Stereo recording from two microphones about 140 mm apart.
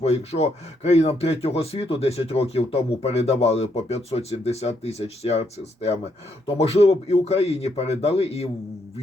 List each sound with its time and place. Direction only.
0.0 s speech: 50° left (ahead or behind)